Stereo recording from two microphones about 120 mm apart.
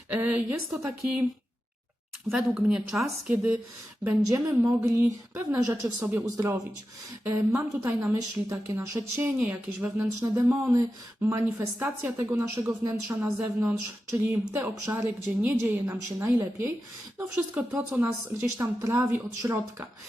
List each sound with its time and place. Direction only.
0.1 s a woman's voice: 15° right (ahead or behind)
2.3 s a woman's voice: 5° right (ahead or behind)
4.3 s a woman's voice: 30° right (ahead or behind)
9.5 s a woman's voice: 10° right (ahead or behind)
10.2 s a woman's voice: 25° right (ahead or behind)
12.5 s speech: 30° right (ahead or behind)
13.2 s a woman's voice: 20° right (ahead or behind)
17.7 s a woman's voice: 15° right (ahead or behind)
18.5 s a woman's voice: 25° right (ahead or behind)